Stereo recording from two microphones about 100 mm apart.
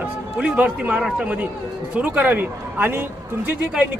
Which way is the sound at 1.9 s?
15° right (ahead or behind).